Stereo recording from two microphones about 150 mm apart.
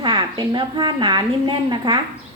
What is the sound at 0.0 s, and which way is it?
A woman's voice, 30° right (ahead or behind).